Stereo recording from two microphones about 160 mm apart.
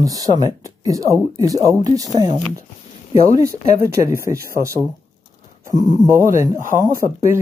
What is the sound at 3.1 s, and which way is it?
Speech, 20° right (ahead or behind).